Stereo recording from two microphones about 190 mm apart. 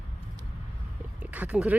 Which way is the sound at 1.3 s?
10° right (ahead or behind).